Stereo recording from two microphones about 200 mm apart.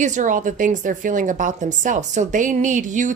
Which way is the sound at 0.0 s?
40° right (ahead or behind).